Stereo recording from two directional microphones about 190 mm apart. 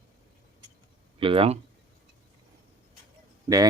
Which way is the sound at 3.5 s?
20° right (ahead or behind).